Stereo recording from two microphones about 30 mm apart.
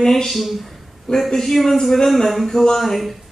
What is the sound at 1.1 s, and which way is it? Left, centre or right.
Speech, centre.